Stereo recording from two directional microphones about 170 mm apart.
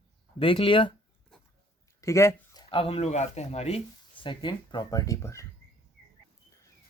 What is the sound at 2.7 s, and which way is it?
Speech, 35° left (ahead or behind).